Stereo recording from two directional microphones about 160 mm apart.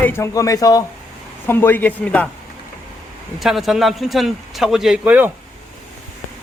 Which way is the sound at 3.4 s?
Centre (ahead or behind).